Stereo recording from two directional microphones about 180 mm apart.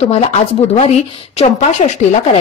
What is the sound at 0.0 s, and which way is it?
Speech, 35° left (ahead or behind).